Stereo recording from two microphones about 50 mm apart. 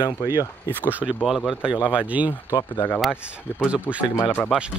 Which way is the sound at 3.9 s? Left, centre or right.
Left.